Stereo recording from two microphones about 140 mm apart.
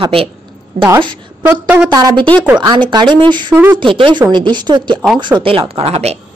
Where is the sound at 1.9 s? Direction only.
30° right (ahead or behind); by 6.1 s 45° right (ahead or behind).